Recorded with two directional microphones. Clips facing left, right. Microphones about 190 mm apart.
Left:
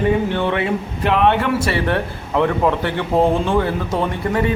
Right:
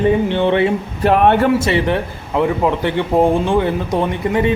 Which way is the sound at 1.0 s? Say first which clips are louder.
Right 4 dB; 45° right (ahead or behind).